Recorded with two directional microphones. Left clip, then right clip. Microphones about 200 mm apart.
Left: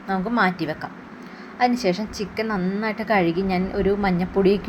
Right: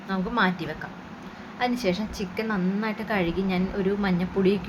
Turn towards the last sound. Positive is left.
turn(degrees=20)  # may be behind; listen again after turning